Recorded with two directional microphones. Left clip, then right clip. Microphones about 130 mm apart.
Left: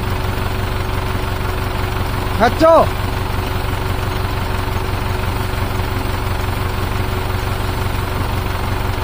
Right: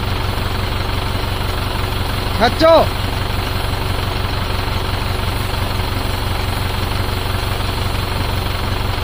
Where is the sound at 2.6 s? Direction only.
20° left (ahead or behind).